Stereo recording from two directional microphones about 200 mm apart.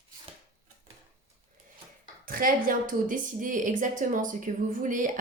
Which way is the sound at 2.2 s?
45° right (ahead or behind).